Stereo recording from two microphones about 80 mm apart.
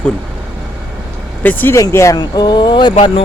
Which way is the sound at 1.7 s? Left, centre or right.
Left.